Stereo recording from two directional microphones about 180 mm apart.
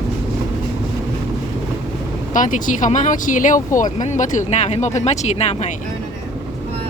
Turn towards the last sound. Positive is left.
turn(degrees=35)  # may be behind; listen again after turning